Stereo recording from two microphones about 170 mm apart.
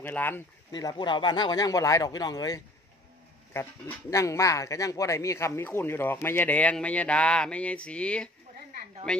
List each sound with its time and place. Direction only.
0.0 s speech: 10° left (ahead or behind)
0.7 s speech: 25° left (ahead or behind); by 9.2 s 5° left (ahead or behind)